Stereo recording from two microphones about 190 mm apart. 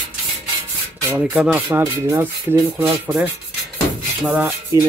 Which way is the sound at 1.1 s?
5° right (ahead or behind).